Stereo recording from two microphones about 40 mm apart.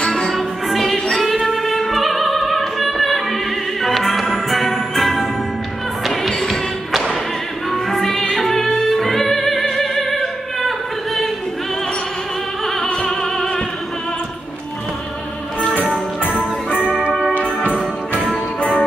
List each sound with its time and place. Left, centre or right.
0.1 s music: centre
7.7 s music: centre
12.8 s opera: centre
16.3 s music: left
18.6 s music: left